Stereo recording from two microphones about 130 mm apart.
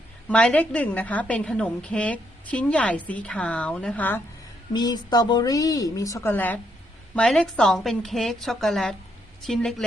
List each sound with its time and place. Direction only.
0.3 s a woman's voice: 10° left (ahead or behind)
4.7 s a woman's voice: 35° left (ahead or behind); by 9.8 s centre (ahead or behind)